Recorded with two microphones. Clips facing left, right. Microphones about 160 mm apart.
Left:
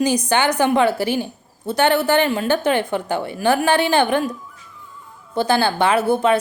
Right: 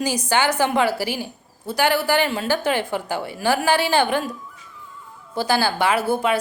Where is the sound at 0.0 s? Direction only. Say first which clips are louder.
Left 3 dB; 20° left (ahead or behind).